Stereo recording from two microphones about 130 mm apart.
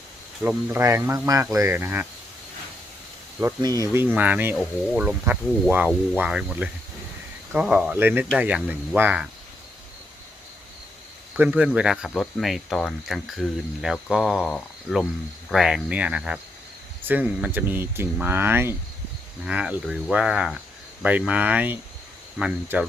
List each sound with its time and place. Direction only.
0.4 s speech: 20° right (ahead or behind)
3.4 s speech: 30° right (ahead or behind)
3.9 s speech: 15° right (ahead or behind)
11.3 s speech: 10° right (ahead or behind)